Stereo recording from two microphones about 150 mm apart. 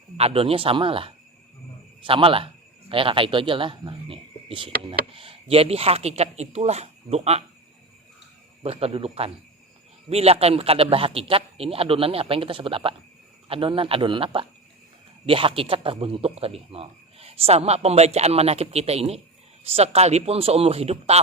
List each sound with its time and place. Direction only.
0.2 s speech: 40° right (ahead or behind)
8.6 s a man's voice: 40° right (ahead or behind)